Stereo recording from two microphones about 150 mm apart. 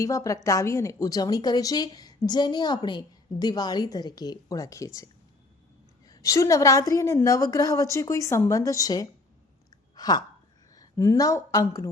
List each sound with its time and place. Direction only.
0.0 s a woman's voice: 20° left (ahead or behind)
6.1 s a woman's voice: 20° left (ahead or behind)
9.9 s a sound: 25° left (ahead or behind)
10.8 s a woman's voice: 20° left (ahead or behind)